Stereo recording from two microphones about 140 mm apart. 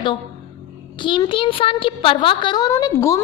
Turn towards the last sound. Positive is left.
turn(degrees=20)  # may be behind; listen again after turning